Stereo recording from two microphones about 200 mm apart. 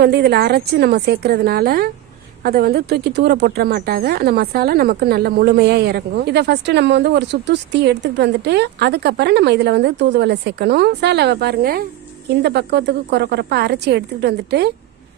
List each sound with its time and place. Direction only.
0.0 s a woman's voice: 55° right (ahead or behind)